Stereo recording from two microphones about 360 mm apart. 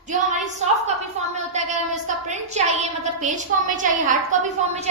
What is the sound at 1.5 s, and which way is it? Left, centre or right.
A woman's voice, centre.